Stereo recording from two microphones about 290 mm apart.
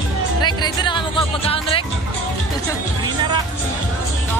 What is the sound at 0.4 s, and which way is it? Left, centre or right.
Music, centre.